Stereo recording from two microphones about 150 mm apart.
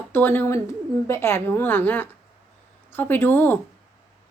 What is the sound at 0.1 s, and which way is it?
A woman's voice, 15° left (ahead or behind).